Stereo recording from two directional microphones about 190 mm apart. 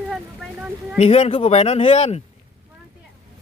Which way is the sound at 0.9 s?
35° left (ahead or behind).